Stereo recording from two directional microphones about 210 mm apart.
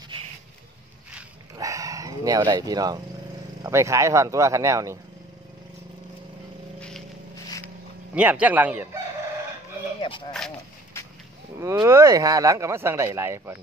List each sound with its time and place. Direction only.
1.6 s dog: 15° right (ahead or behind)
3.6 s speech: 15° right (ahead or behind)
8.1 s speech: 5° right (ahead or behind)
9.9 s speech: 25° left (ahead or behind)
10.3 s speech: 5° left (ahead or behind)
11.6 s speech: 15° right (ahead or behind)